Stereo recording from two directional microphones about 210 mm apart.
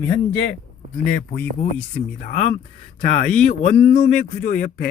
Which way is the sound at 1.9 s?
40° left (ahead or behind).